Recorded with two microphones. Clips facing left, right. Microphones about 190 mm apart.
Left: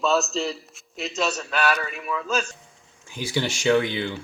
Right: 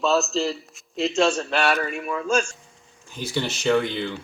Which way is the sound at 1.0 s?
30° right (ahead or behind).